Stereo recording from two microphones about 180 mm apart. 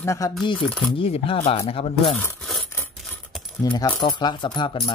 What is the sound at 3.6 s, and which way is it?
Speech, 20° left (ahead or behind).